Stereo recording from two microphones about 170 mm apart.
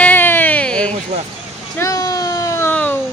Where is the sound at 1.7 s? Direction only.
20° left (ahead or behind).